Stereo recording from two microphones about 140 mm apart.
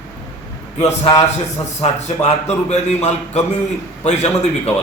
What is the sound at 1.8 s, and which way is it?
A man's voice, 50° left (ahead or behind).